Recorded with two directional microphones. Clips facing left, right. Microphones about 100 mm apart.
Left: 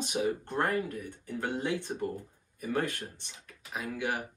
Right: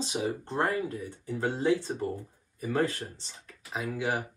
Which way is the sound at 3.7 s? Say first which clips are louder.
Right 3 dB; 20° right (ahead or behind).